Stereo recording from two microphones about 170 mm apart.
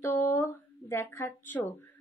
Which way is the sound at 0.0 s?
15° left (ahead or behind).